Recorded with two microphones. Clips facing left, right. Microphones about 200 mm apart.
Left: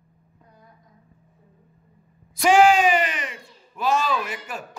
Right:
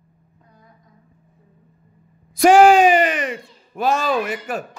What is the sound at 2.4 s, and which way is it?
Speech, 55° right (ahead or behind).